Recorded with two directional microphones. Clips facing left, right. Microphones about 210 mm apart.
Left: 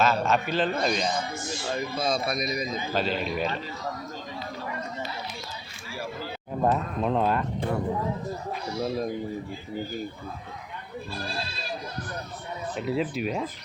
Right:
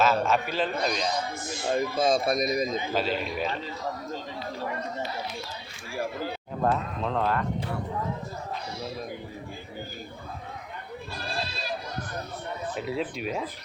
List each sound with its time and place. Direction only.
0.0 s a man's voice: 5° right (ahead or behind)
1.4 s a man's voice: 55° right (ahead or behind)
2.9 s a man's voice: 5° right (ahead or behind)
6.6 s speech: 15° left (ahead or behind)
12.7 s a man's voice: centre (ahead or behind)